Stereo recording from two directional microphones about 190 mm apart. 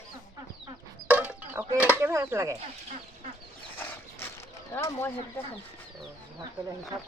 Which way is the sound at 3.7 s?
10° left (ahead or behind).